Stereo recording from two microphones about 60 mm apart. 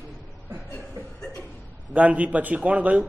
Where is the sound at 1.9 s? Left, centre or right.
Right.